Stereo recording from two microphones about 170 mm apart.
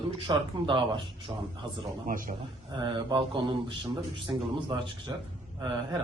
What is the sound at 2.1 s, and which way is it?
Speech, 55° right (ahead or behind).